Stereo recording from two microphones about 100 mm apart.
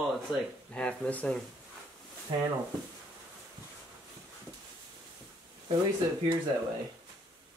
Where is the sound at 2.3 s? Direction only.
45° right (ahead or behind).